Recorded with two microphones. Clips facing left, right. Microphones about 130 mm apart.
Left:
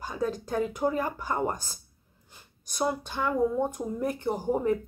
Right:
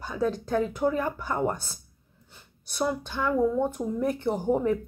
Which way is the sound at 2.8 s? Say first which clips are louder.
Right 1 dB; 15° left (ahead or behind).